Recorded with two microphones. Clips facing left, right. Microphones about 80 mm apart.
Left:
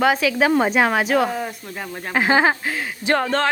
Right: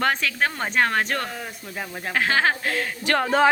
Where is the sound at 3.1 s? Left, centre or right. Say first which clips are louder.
Right 2 dB; centre.